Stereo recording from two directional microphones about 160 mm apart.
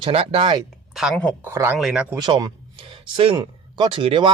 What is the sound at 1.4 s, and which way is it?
Speech, 15° right (ahead or behind).